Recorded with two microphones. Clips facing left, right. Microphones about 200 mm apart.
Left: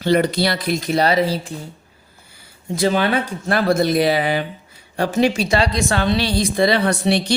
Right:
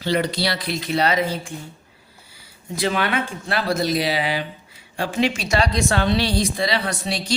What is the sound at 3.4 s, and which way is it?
Speech, 50° left (ahead or behind).